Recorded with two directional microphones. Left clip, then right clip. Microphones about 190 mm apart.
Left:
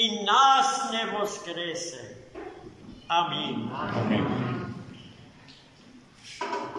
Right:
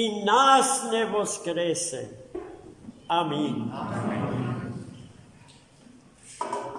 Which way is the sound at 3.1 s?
40° right (ahead or behind).